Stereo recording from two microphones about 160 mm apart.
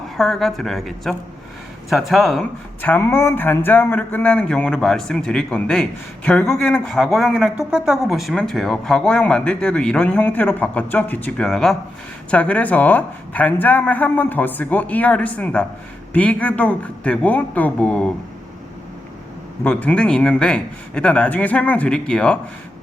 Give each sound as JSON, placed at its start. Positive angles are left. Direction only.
{"t": 0.2, "sound": "speech", "side_deg": 0}
{"t": 19.6, "sound": "speech", "side_deg": 10}